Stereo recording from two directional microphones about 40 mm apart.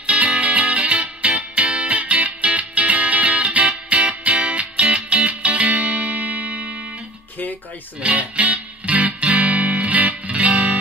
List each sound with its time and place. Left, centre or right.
0.0 s music: right
8.0 s music: right